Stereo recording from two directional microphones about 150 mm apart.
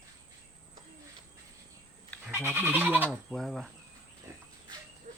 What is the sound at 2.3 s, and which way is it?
Speech, 15° right (ahead or behind).